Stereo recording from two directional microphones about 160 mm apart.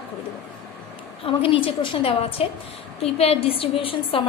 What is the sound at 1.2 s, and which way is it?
A woman's voice, 35° left (ahead or behind).